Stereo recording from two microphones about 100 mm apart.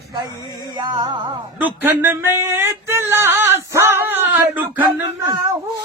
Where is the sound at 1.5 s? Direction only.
20° right (ahead or behind).